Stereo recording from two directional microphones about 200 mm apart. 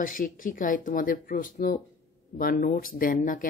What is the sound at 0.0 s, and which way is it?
Speech, 45° left (ahead or behind).